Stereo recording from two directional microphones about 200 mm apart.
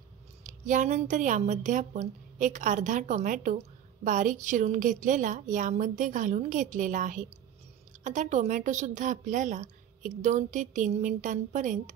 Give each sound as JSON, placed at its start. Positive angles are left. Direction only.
{"t": 0.4, "sound": "a woman's voice", "side_deg": -40}